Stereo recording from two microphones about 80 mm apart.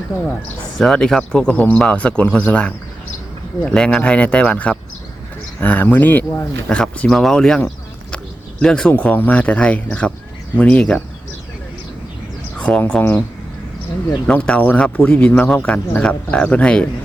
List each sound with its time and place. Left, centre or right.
0.8 s speech: centre
5.5 s speech: left
6.7 s speech: centre
8.1 s a sound: centre
8.9 s speech: left
12.5 s bird: centre
12.9 s speech: left
14.3 s speech: centre